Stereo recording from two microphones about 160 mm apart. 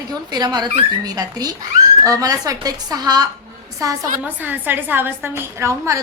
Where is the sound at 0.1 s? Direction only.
25° right (ahead or behind).